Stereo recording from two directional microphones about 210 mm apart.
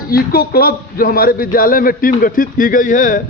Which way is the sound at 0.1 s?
45° left (ahead or behind).